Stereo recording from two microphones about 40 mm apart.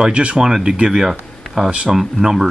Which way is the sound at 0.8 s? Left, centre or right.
Centre.